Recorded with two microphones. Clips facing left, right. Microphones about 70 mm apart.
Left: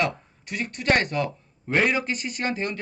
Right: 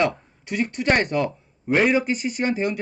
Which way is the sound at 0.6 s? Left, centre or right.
Centre.